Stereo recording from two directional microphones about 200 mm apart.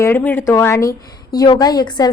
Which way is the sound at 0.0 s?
10° left (ahead or behind).